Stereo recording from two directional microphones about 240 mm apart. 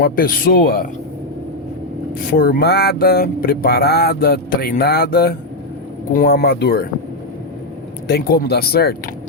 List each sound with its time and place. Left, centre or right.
0.0 s speech: left
2.3 s speech: left
8.0 s speech: left